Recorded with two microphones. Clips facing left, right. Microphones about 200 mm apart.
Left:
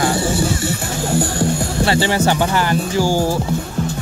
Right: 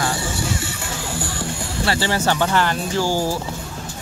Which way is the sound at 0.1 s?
35° left (ahead or behind).